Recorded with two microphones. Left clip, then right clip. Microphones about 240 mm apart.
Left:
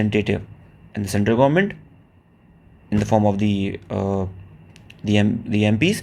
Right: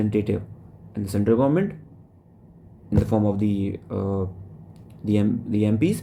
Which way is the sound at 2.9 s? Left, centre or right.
Centre.